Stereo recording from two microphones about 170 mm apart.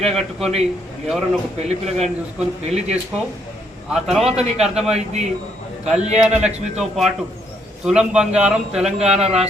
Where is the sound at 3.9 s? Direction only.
Centre (ahead or behind).